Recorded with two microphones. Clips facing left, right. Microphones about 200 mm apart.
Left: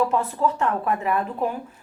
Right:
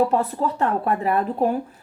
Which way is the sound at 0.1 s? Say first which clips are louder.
Right 1 dB; 35° right (ahead or behind).